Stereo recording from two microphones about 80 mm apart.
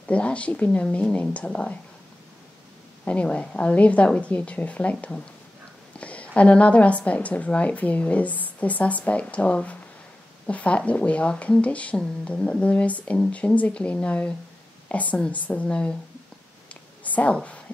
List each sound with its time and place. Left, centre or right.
0.0 s speech: centre
3.1 s speech: centre
17.0 s a woman's voice: centre